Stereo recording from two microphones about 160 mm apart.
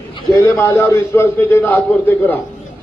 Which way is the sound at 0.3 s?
20° left (ahead or behind).